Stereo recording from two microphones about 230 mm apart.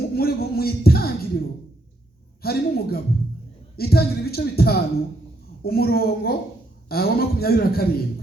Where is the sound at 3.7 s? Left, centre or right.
Left.